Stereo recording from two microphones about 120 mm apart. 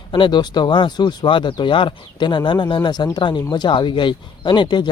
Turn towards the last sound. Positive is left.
turn(degrees=40)  # may be behind; listen again after turning